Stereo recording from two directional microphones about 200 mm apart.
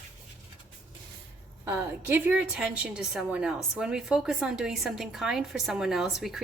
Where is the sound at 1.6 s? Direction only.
10° right (ahead or behind).